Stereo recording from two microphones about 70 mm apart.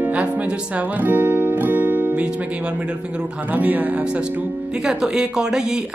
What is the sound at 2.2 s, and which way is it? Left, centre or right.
Speech, centre.